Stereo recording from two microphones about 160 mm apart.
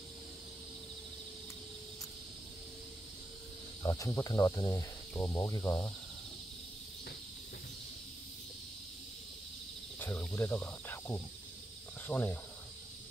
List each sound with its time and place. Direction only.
3.8 s cricket: 20° left (ahead or behind)
5.1 s speech: 15° left (ahead or behind)
9.9 s speech: 10° left (ahead or behind)